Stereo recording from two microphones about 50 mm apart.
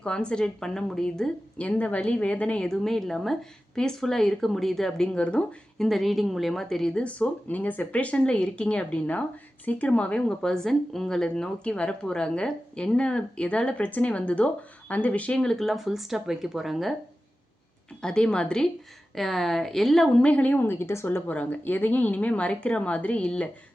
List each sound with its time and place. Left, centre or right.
0.0 s speech: centre
1.6 s speech: left
2.6 s speech: centre
5.8 s speech: centre
6.9 s speech: left
10.2 s speech: centre; by 15.4 s left
15.4 s speech: centre
18.0 s speech: centre
19.1 s speech: centre
20.2 s a woman's voice: left
20.7 s speech: left
21.2 s speech: left